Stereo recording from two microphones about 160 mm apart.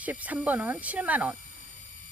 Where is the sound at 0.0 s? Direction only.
10° right (ahead or behind).